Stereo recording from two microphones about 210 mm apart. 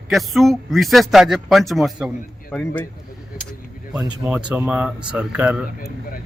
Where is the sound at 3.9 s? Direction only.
5° right (ahead or behind).